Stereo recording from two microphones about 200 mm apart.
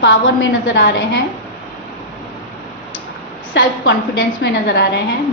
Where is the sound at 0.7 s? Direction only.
55° left (ahead or behind).